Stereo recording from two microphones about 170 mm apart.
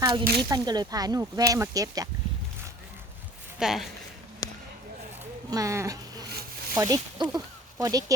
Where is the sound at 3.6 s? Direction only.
Centre (ahead or behind).